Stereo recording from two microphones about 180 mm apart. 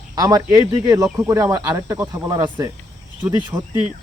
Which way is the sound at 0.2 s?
20° right (ahead or behind).